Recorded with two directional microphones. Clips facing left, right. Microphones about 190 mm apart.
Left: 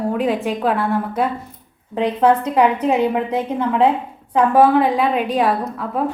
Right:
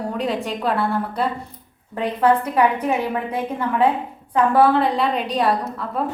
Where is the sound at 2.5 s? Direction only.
20° left (ahead or behind).